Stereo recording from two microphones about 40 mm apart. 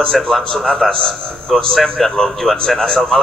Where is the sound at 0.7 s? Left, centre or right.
Centre.